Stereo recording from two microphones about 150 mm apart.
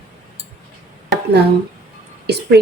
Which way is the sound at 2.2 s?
90° right.